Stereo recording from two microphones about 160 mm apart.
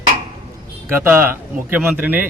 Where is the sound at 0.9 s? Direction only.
15° right (ahead or behind).